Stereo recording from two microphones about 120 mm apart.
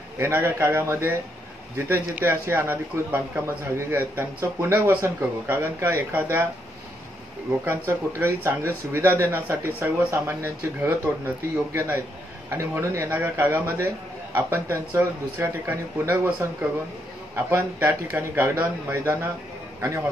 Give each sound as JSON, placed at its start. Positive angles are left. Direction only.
{"t": 0.2, "sound": "speech", "side_deg": -20}
{"t": 7.6, "sound": "speech", "side_deg": -20}
{"t": 17.5, "sound": "speech", "side_deg": -20}